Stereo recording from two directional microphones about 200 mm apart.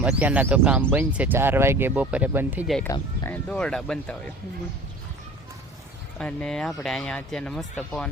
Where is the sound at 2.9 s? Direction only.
10° left (ahead or behind).